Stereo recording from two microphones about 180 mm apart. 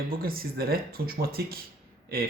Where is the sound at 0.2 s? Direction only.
55° right (ahead or behind).